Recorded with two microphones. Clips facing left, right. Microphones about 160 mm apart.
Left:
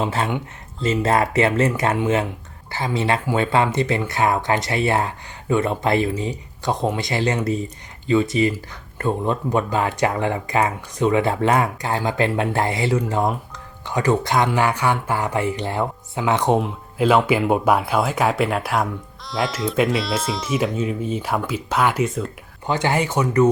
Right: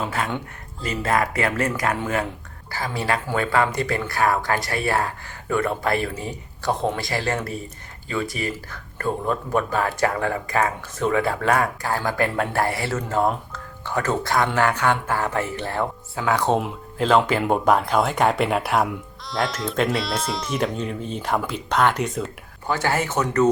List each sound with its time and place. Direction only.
0.0 s speech: 30° left (ahead or behind); by 22.3 s centre (ahead or behind)
22.6 s speech: 20° left (ahead or behind)